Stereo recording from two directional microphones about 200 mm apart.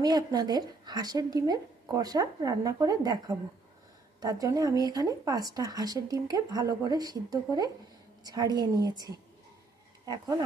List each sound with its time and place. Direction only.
0.0 s speech: 20° right (ahead or behind)